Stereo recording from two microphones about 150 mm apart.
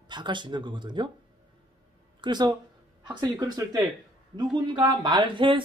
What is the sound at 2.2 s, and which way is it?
Speech, 30° right (ahead or behind).